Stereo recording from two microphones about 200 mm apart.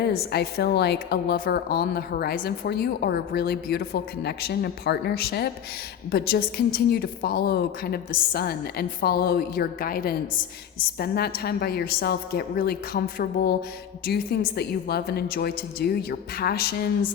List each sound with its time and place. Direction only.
0.0 s a woman's voice: 50° left (ahead or behind)